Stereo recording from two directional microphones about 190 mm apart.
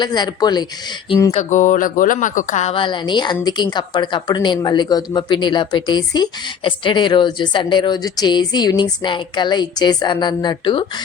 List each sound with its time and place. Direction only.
0.0 s a woman's voice: 25° left (ahead or behind)
1.3 s a woman's voice: 35° left (ahead or behind)